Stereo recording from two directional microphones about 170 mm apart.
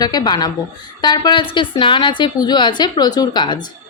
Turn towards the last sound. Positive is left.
turn(degrees=25)  # may be behind; listen again after turning